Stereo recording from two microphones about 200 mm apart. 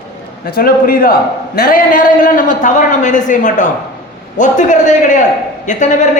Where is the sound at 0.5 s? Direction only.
45° left (ahead or behind).